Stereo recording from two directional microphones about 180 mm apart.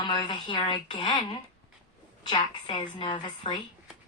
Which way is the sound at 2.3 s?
25° left (ahead or behind).